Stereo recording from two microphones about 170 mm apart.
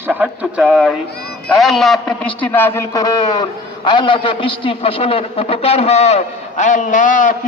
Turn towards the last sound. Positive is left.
turn(degrees=50)  # may be behind; listen again after turning